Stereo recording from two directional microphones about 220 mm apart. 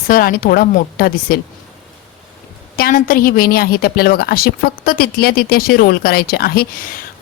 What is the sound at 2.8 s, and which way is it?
A woman's voice, 40° left (ahead or behind).